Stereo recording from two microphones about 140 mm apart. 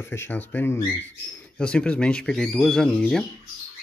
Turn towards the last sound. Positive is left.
turn(degrees=5)  # may be behind; listen again after turning